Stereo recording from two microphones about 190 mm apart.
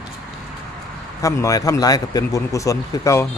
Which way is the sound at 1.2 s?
15° left (ahead or behind).